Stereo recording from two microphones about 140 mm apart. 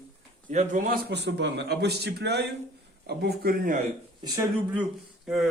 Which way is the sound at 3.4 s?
90° right.